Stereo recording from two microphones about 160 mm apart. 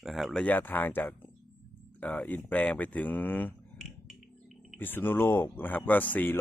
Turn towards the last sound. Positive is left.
turn(degrees=10)  # may be behind; listen again after turning